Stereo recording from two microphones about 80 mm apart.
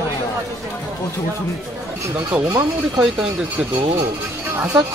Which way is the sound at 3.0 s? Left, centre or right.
Centre.